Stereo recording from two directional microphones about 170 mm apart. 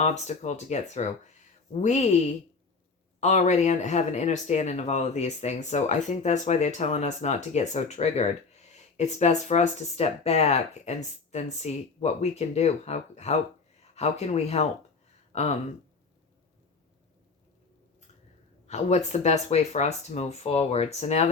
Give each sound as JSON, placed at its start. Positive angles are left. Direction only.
{"t": 0.0, "sound": "speech", "side_deg": 45}
{"t": 18.7, "sound": "speech", "side_deg": 40}